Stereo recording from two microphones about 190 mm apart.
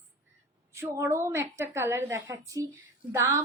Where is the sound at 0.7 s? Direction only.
15° right (ahead or behind).